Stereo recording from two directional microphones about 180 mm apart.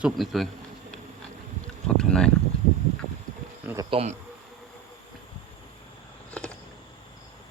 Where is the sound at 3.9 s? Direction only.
35° right (ahead or behind).